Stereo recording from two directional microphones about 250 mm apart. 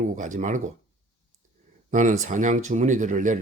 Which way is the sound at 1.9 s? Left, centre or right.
Right.